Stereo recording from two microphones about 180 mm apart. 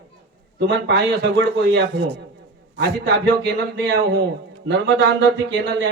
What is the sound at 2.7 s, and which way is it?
A man's voice, 85° right.